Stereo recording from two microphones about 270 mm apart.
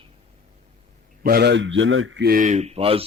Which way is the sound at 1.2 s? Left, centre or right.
Right.